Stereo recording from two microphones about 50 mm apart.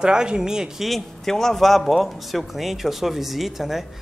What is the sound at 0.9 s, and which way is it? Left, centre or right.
A man's voice, centre.